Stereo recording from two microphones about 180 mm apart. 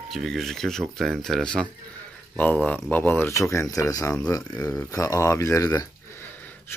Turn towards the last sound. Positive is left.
turn(degrees=20)  # may be behind; listen again after turning